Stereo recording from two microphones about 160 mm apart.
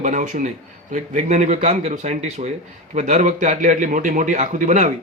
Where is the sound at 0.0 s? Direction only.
50° right (ahead or behind).